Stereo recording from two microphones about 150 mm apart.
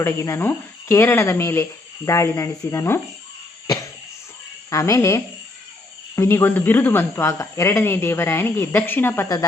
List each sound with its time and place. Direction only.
0.0 s speech: 20° left (ahead or behind)
4.7 s speech: 20° left (ahead or behind)